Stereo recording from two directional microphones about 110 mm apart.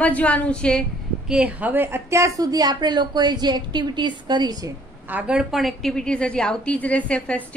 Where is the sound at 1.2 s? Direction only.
10° right (ahead or behind); by 4.7 s 40° right (ahead or behind).